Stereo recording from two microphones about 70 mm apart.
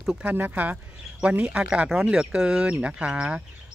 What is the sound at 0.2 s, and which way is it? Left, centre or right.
Speech, right.